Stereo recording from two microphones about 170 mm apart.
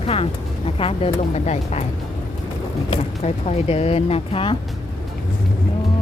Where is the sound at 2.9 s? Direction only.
35° left (ahead or behind).